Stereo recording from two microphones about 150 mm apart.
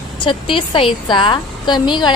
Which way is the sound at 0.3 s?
35° left (ahead or behind).